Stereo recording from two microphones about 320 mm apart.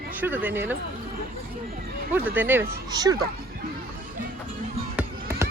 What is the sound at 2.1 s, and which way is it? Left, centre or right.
A woman's voice, centre.